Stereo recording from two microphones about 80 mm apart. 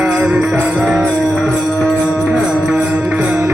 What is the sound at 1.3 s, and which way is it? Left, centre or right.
Music, centre.